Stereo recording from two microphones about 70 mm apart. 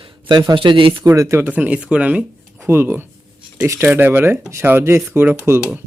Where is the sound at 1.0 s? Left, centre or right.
Right.